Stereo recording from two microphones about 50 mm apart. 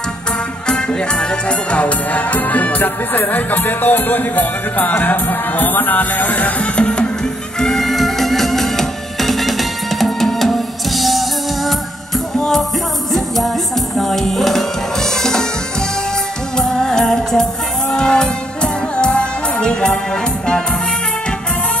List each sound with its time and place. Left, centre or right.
0.7 s music: centre; by 6.5 s left
6.6 s music: left
7.5 s music: centre
13.1 s music: centre
16.5 s music: centre